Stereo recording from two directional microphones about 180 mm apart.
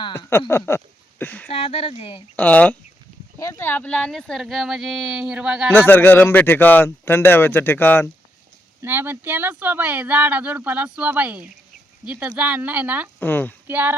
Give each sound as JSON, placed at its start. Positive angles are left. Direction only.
{"t": 0.0, "sound": "a man's voice", "side_deg": 15}
{"t": 1.5, "sound": "speech", "side_deg": 35}
{"t": 2.3, "sound": "a man's voice", "side_deg": 10}
{"t": 5.7, "sound": "a man's voice", "side_deg": 10}
{"t": 8.8, "sound": "speech", "side_deg": -10}
{"t": 13.1, "sound": "a man's voice", "side_deg": 10}
{"t": 13.7, "sound": "speech", "side_deg": -10}